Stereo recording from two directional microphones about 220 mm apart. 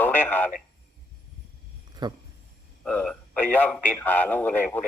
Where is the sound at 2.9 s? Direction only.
5° left (ahead or behind).